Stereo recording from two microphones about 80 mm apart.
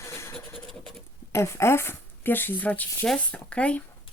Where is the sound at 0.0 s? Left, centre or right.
Left.